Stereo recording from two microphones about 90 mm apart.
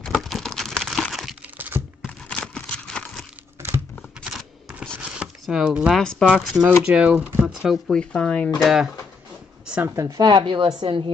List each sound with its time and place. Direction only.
0.1 s a sound: centre (ahead or behind)
2.0 s a sound: 10° left (ahead or behind)
5.4 s speech: 5° right (ahead or behind)
5.9 s speech: 5° left (ahead or behind)
6.2 s speech: 10° right (ahead or behind)
7.9 s speech: 10° left (ahead or behind)
8.5 s speech: centre (ahead or behind)
9.7 s a sound: 20° right (ahead or behind)
9.9 s speech: 35° right (ahead or behind)
10.2 s a woman's voice: 55° right (ahead or behind)